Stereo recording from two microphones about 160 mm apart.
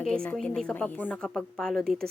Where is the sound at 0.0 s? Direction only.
5° left (ahead or behind).